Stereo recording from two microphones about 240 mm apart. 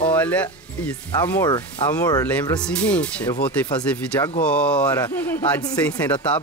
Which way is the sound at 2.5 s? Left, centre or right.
Centre.